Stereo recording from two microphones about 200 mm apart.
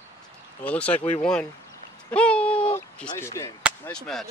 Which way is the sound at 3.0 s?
15° left (ahead or behind).